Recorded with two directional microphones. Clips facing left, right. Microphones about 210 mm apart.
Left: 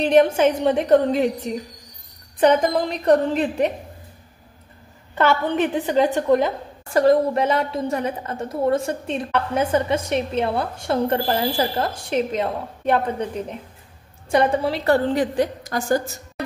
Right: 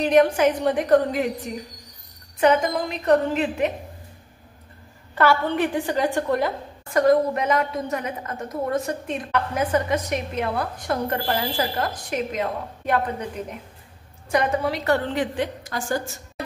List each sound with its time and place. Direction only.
0.0 s a woman's voice: 30° left (ahead or behind)
5.1 s a woman's voice: 20° left (ahead or behind)
6.9 s a woman's voice: 30° left (ahead or behind)
14.3 s a woman's voice: 30° left (ahead or behind)